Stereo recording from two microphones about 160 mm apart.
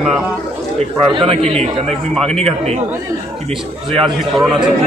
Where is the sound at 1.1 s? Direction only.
35° right (ahead or behind).